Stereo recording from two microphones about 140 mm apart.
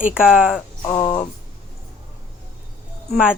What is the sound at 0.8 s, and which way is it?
Speech, 30° left (ahead or behind).